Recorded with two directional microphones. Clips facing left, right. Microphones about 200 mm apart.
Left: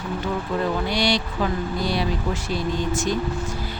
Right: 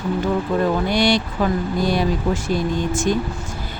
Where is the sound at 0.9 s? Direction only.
50° right (ahead or behind).